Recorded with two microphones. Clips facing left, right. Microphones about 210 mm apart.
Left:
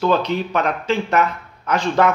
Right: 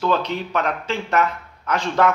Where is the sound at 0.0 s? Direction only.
15° left (ahead or behind).